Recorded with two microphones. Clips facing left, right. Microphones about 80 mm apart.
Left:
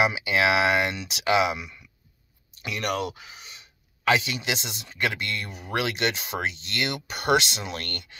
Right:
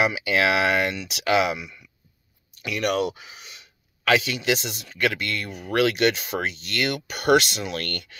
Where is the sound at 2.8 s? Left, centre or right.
Centre.